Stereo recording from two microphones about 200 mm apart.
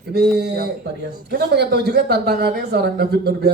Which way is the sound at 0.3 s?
55° right (ahead or behind).